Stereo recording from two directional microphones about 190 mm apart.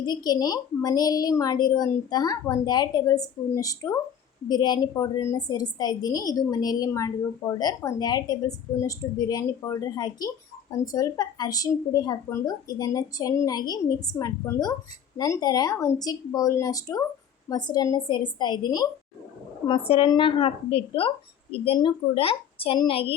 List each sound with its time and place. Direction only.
0.0 s a woman's voice: 20° left (ahead or behind)